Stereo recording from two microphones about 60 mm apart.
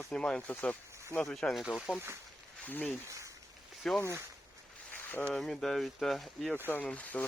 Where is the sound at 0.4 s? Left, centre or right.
Left.